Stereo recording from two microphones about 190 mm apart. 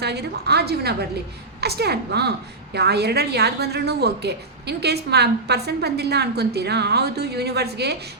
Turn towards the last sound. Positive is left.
turn(degrees=-60)  # may be behind; listen again after turning